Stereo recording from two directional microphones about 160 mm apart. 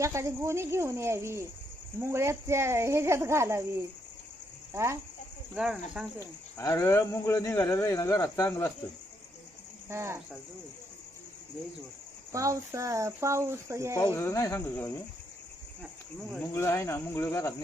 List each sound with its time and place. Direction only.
0.0 s speech: 20° right (ahead or behind)
4.7 s speech: 15° right (ahead or behind)
5.5 s speech: 5° right (ahead or behind)
6.6 s speech: 20° left (ahead or behind)
9.9 s speech: 15° right (ahead or behind)
12.3 s speech: 20° right (ahead or behind)
14.0 s speech: 15° left (ahead or behind)
16.6 s speech: 15° left (ahead or behind)